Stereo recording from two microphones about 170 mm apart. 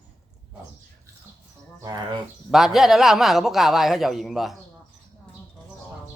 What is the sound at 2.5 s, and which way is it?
A man's voice, centre (ahead or behind).